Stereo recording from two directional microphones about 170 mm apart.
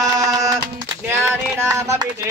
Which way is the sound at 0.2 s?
20° right (ahead or behind).